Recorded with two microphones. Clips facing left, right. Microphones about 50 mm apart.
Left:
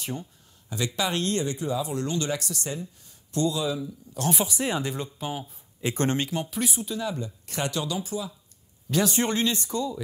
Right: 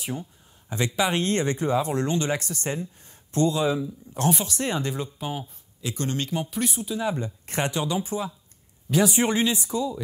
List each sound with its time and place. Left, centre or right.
0.7 s speech: right
1.3 s speech: right
2.0 s speech: right
4.3 s speech: centre
5.8 s speech: left
6.3 s speech: centre
7.0 s speech: right
8.9 s speech: centre